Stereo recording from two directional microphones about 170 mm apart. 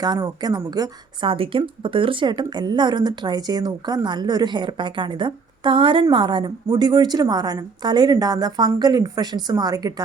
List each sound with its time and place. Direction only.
0.0 s speech: 25° right (ahead or behind)